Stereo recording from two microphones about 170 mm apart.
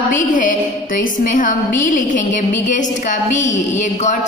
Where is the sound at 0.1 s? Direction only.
50° left (ahead or behind).